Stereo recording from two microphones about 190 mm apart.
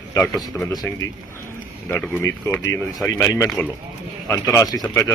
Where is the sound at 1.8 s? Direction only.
10° left (ahead or behind).